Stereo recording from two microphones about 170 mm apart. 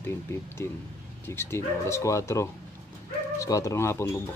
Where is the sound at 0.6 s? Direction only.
15° left (ahead or behind).